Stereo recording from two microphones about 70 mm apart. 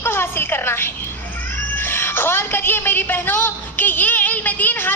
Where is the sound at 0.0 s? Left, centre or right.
Left.